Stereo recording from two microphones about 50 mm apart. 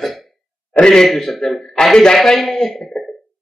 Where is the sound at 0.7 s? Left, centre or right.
Centre.